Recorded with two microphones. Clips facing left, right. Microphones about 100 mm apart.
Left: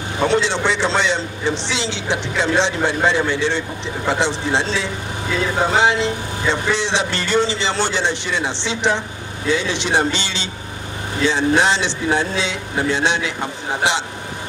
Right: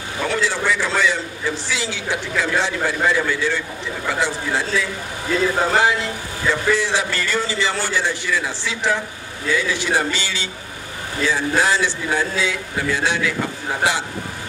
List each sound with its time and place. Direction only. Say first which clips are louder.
0.2 s a man's voice: left 4 dB; 25° left (ahead or behind)